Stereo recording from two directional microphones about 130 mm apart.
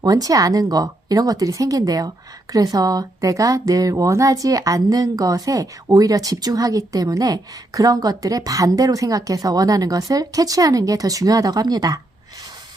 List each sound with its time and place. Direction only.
0.0 s speech: 30° right (ahead or behind)